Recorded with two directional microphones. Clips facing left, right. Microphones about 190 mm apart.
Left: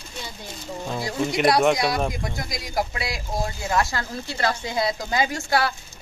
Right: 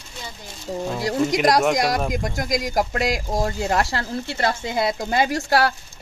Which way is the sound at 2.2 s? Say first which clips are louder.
Right 7 dB; 45° right (ahead or behind).